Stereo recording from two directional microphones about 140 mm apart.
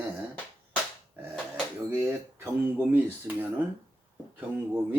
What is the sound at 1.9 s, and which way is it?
Speech, 20° right (ahead or behind).